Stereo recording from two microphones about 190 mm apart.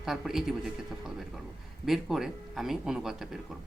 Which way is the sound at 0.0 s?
Centre (ahead or behind).